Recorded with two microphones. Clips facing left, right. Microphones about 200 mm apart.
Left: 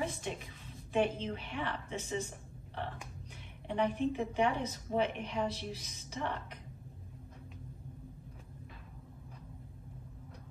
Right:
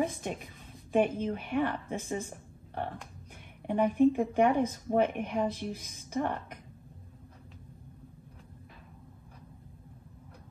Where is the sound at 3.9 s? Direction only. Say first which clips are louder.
Right 8 dB; 50° right (ahead or behind).